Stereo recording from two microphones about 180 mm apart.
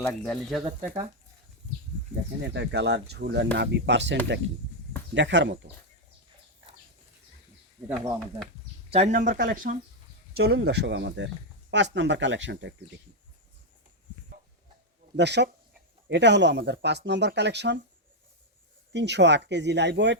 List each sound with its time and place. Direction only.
0.0 s speech: 5° left (ahead or behind)
2.4 s speech: 70° right (ahead or behind)
7.9 s speech: 10° right (ahead or behind)
8.9 s speech: 40° right (ahead or behind)
10.3 s speech: 65° right (ahead or behind); by 12.7 s 85° right
15.1 s speech: 75° right (ahead or behind)
18.9 s speech: 70° right (ahead or behind)